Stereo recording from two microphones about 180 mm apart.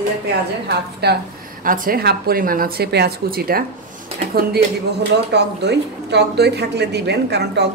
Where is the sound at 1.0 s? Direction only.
65° right (ahead or behind).